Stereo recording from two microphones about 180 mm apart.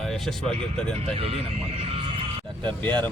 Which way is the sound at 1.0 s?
30° right (ahead or behind).